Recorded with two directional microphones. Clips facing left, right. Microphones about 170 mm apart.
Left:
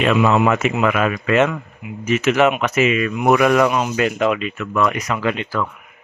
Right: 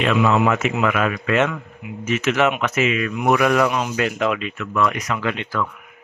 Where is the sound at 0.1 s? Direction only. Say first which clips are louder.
Left 1 dB; 25° left (ahead or behind).